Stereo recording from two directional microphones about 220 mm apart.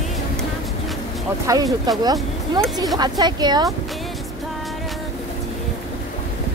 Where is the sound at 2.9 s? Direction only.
20° right (ahead or behind).